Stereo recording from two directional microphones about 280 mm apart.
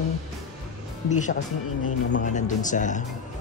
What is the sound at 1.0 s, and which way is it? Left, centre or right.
Speech, left.